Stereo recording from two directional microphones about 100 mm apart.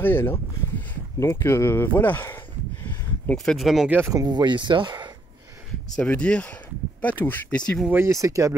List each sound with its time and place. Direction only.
0.0 s speech: 20° left (ahead or behind)
3.4 s speech: centre (ahead or behind)
4.1 s speech: 40° right (ahead or behind)
5.9 s speech: 10° left (ahead or behind)
7.9 s speech: 30° right (ahead or behind)